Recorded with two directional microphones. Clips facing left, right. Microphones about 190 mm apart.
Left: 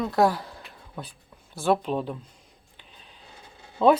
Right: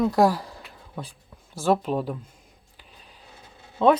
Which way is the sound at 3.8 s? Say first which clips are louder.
Even; centre (ahead or behind).